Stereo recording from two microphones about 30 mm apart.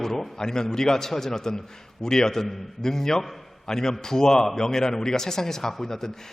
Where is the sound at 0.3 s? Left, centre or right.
Left.